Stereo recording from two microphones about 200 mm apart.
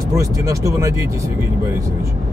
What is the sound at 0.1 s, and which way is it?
Speech, 15° right (ahead or behind).